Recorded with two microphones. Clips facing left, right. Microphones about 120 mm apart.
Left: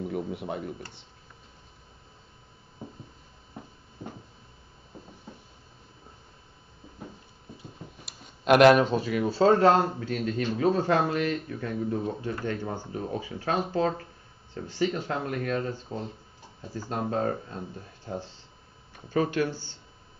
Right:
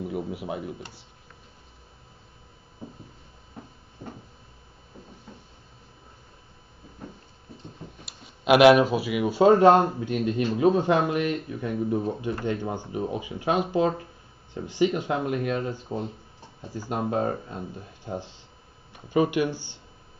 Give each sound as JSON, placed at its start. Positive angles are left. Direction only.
{"t": 0.0, "sound": "speech", "side_deg": -5}
{"t": 7.5, "sound": "speech", "side_deg": 0}